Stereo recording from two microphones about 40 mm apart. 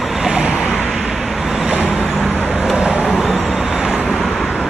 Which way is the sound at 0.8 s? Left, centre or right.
Centre.